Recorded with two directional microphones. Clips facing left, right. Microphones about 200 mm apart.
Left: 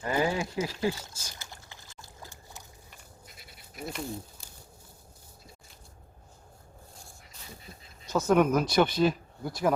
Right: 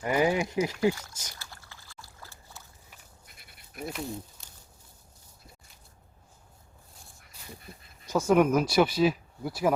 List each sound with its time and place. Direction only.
0.0 s speech: 20° right (ahead or behind)
1.4 s pour: 20° left (ahead or behind)
3.3 s a sound: 55° right (ahead or behind)
3.8 s speech: centre (ahead or behind)
8.0 s speech: 10° right (ahead or behind)